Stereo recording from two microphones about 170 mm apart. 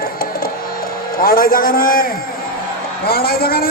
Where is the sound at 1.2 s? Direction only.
55° left (ahead or behind).